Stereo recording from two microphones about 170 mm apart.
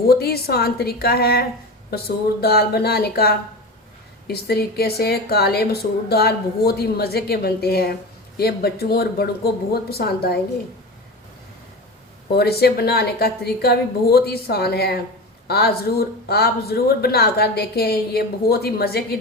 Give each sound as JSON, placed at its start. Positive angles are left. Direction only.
{"t": 0.1, "sound": "a woman's voice", "side_deg": 65}
{"t": 12.4, "sound": "a woman's voice", "side_deg": 70}